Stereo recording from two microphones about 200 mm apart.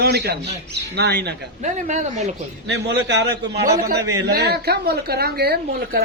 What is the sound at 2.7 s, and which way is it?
A man's voice, 60° right (ahead or behind).